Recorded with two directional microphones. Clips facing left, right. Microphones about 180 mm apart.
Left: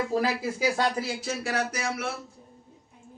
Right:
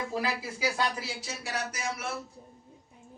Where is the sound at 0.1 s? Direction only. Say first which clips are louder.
Left 6 dB; 45° left (ahead or behind).